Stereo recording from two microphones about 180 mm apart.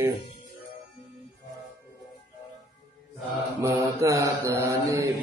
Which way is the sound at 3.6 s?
15° right (ahead or behind).